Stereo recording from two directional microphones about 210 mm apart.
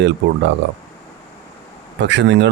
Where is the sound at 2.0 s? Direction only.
55° right (ahead or behind).